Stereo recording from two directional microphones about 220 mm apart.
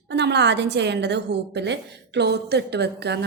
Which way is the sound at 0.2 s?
50° right (ahead or behind).